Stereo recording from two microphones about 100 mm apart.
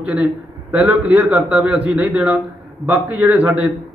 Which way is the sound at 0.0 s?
15° right (ahead or behind).